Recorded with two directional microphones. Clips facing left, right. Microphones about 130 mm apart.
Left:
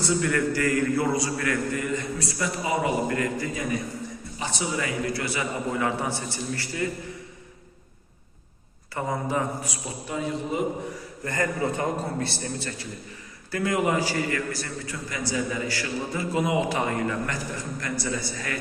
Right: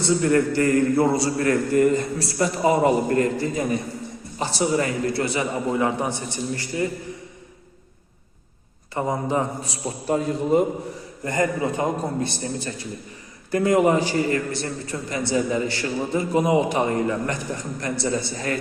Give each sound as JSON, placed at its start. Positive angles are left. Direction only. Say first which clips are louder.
{"t": 0.0, "sound": "a man's voice", "louder": "right 5 dB", "side_deg": -30}
{"t": 5.2, "sound": "a man's voice", "louder": "right 5 dB", "side_deg": -25}
{"t": 9.0, "sound": "a man's voice", "louder": "right 4 dB", "side_deg": -25}
{"t": 10.2, "sound": "a man's voice", "louder": "right 7 dB", "side_deg": -45}
{"t": 11.3, "sound": "a man's voice", "louder": "right 4 dB", "side_deg": -20}